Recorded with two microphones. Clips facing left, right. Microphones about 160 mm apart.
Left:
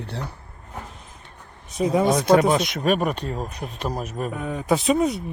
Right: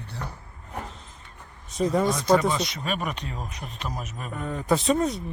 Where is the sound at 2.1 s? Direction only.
65° left (ahead or behind); by 4.3 s 45° left (ahead or behind).